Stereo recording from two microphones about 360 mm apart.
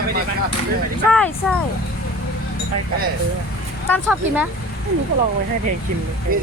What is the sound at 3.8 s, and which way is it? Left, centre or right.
Speech, centre.